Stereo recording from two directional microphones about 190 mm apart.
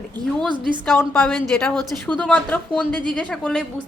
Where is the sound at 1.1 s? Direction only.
Centre (ahead or behind).